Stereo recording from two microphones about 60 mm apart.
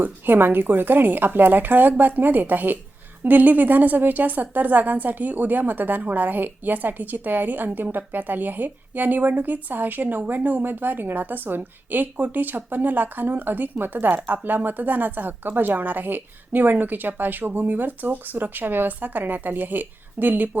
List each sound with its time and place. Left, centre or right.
0.0 s a woman's voice: right